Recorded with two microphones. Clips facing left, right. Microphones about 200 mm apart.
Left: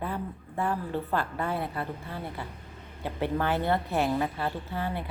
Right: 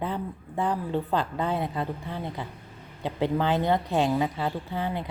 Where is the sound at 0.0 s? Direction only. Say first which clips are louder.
Right 3 dB; 20° right (ahead or behind).